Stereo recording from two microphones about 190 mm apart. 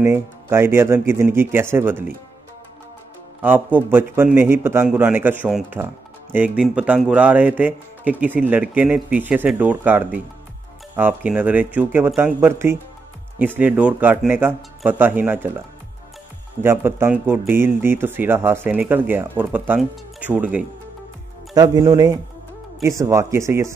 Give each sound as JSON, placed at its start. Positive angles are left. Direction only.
{"t": 0.0, "sound": "speech", "side_deg": -10}
{"t": 3.4, "sound": "speech", "side_deg": -10}
{"t": 16.6, "sound": "speech", "side_deg": -10}
{"t": 21.5, "sound": "speech", "side_deg": -20}